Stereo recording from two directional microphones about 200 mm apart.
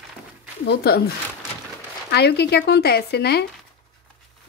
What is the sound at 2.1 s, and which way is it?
Speech, 55° left (ahead or behind).